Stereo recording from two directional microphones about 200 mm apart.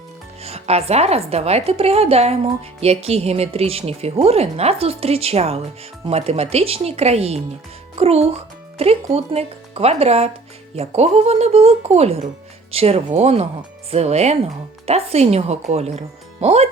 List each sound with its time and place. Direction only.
0.4 s speech: 30° right (ahead or behind)